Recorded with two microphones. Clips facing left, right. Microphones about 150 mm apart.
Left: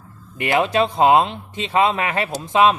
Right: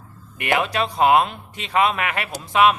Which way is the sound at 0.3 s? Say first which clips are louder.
Left 4 dB; 30° left (ahead or behind).